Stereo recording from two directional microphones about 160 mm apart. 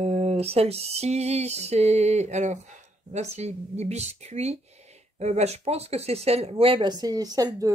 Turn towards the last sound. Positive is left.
turn(degrees=-20)  # may be behind; listen again after turning